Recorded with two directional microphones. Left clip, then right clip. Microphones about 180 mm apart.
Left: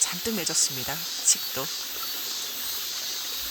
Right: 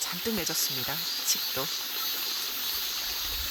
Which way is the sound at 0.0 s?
10° left (ahead or behind).